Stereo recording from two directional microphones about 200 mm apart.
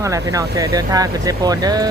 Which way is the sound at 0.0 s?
15° right (ahead or behind).